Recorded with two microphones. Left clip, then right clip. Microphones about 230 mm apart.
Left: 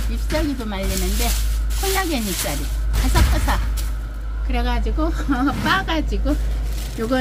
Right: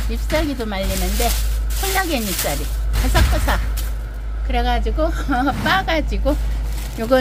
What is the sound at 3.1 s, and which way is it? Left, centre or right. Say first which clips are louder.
Speech: right 3 dB; centre.